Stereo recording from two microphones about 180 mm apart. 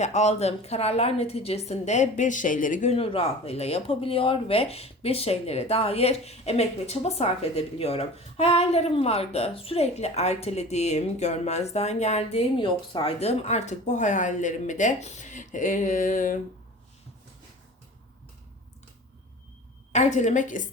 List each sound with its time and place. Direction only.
0.0 s a woman's voice: 40° left (ahead or behind)
19.9 s a woman's voice: 40° left (ahead or behind)